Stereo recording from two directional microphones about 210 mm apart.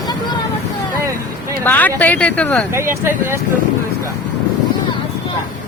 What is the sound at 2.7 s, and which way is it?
Speech, 10° right (ahead or behind).